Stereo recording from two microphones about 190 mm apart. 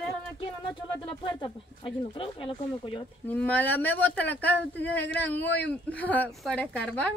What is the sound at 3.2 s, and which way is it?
Speech, 10° left (ahead or behind).